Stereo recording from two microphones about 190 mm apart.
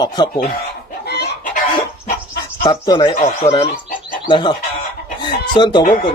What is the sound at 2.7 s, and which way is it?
Speech, 25° left (ahead or behind).